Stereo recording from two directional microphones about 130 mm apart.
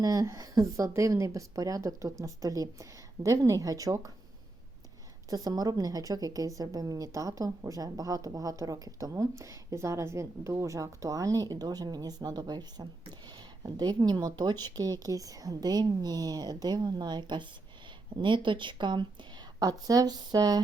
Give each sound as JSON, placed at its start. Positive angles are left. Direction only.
{"t": 0.0, "sound": "a woman's voice", "side_deg": -30}
{"t": 5.3, "sound": "a woman's voice", "side_deg": -30}